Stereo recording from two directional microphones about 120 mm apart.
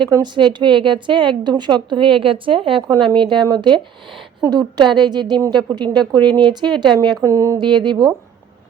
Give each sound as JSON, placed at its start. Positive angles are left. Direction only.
{"t": 0.1, "sound": "a woman's voice", "side_deg": -40}
{"t": 6.1, "sound": "speech", "side_deg": 15}
{"t": 6.4, "sound": "a woman's voice", "side_deg": -40}
{"t": 7.3, "sound": "speech", "side_deg": -25}
{"t": 7.6, "sound": "a woman's voice", "side_deg": -40}